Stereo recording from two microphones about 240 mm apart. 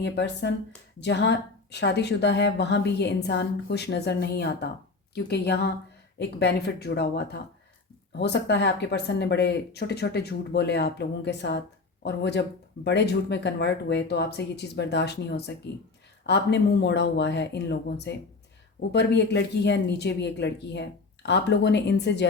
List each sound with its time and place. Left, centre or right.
0.0 s speech: left